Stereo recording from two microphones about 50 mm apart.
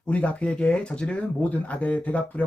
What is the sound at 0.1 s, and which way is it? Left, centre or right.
Speech, left.